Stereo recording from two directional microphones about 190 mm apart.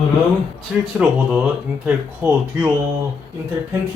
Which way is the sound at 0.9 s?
5° right (ahead or behind).